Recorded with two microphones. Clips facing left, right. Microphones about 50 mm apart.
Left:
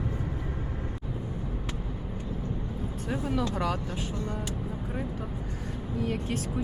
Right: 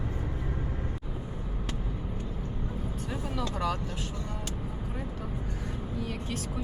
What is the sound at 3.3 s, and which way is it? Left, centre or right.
Vehicle, left.